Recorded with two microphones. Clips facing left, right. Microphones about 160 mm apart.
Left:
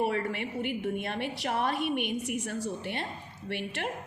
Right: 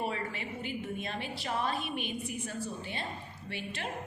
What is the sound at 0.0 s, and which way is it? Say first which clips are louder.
A woman's voice: left 6 dB; 65° left (ahead or behind).